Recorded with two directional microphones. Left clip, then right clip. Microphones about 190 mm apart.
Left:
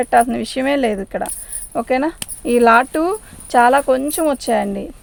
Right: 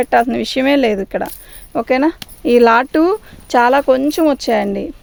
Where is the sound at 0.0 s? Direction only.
45° right (ahead or behind).